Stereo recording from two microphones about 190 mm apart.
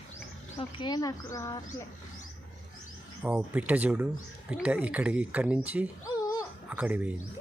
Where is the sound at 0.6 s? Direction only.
25° left (ahead or behind).